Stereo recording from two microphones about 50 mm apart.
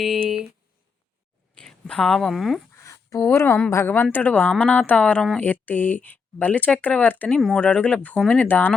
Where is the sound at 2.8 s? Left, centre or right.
Left.